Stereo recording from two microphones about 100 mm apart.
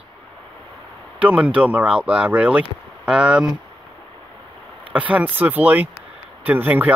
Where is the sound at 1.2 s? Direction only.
15° right (ahead or behind).